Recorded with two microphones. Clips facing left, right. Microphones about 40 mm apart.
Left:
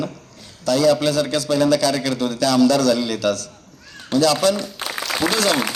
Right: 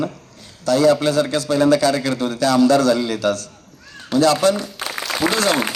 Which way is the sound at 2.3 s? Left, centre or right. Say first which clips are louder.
Right 2 dB; right.